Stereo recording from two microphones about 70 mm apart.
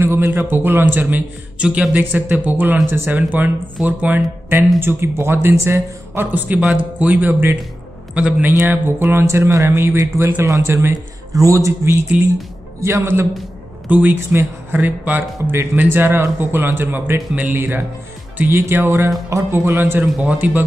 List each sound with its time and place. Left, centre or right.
0.0 s speech: right
1.6 s speech: centre
4.7 s speech: right
6.3 s speech: right
6.6 s speech: centre
8.1 s a man's voice: centre
8.5 s a man's voice: right
12.1 s speech: centre
12.8 s speech: right
13.8 s speech: right
19.6 s speech: right
20.2 s speech: right